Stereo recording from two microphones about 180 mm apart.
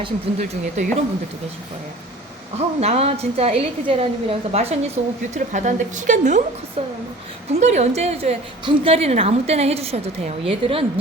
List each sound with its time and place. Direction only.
0.0 s a woman's voice: 35° right (ahead or behind)
2.6 s a woman's voice: 35° right (ahead or behind)
6.8 s a woman's voice: 30° right (ahead or behind)